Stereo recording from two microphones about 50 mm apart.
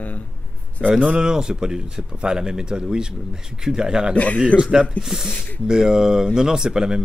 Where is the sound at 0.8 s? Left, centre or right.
Centre.